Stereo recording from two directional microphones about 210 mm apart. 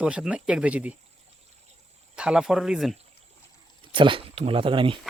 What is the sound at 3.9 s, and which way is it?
Speech, 25° right (ahead or behind).